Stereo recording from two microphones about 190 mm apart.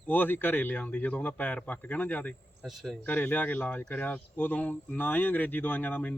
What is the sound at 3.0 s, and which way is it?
Speech, 10° left (ahead or behind).